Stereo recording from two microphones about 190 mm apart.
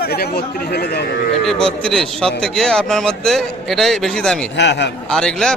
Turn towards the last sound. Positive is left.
turn(degrees=5)  # may be behind; listen again after turning